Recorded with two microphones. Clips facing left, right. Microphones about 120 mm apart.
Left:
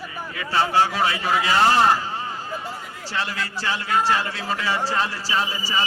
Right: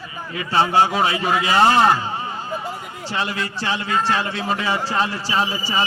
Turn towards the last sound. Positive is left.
turn(degrees=-20)  # may be behind; listen again after turning